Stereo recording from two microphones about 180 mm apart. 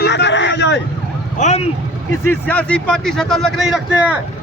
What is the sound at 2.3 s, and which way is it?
A man's voice, 10° left (ahead or behind).